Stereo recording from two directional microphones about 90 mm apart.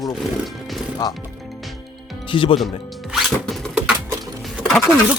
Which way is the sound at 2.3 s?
75° left (ahead or behind).